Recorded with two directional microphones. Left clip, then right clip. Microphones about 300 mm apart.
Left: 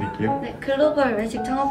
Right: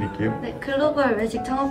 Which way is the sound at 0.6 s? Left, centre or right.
Centre.